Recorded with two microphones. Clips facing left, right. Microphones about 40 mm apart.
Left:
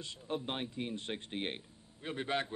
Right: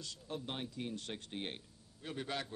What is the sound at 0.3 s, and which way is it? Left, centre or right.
Speech, left.